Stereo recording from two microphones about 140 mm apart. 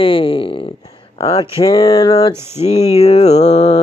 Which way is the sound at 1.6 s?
30° left (ahead or behind).